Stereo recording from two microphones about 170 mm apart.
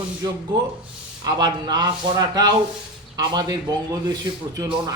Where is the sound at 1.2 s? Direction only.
25° right (ahead or behind).